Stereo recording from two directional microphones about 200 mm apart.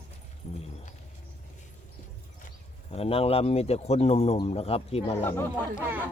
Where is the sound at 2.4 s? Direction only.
30° left (ahead or behind).